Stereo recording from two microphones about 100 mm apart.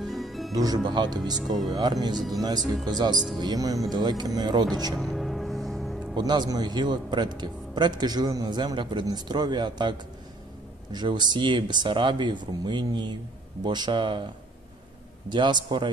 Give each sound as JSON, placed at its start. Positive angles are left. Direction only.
{"t": 0.0, "sound": "music", "side_deg": 0}
{"t": 0.5, "sound": "a man's voice", "side_deg": -40}
{"t": 2.1, "sound": "speech", "side_deg": 0}
{"t": 2.4, "sound": "a man's voice", "side_deg": -45}
{"t": 4.9, "sound": "music", "side_deg": 0}
{"t": 6.1, "sound": "a man's voice", "side_deg": -45}
{"t": 15.2, "sound": "a man's voice", "side_deg": -50}